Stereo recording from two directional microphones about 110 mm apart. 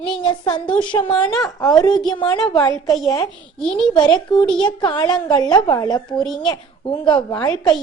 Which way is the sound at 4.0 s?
40° left (ahead or behind).